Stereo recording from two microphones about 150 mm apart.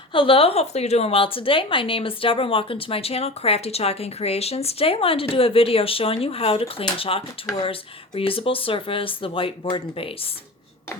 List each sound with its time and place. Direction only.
0.1 s a woman's voice: 35° left (ahead or behind)